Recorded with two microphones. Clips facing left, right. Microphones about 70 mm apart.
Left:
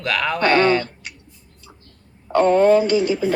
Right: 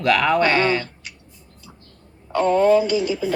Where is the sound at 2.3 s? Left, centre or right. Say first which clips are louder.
Left 2 dB; left.